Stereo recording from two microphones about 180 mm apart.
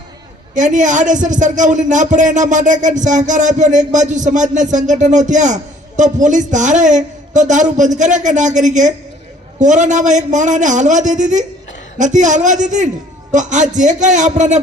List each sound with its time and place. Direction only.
0.5 s a man's voice: 45° right (ahead or behind)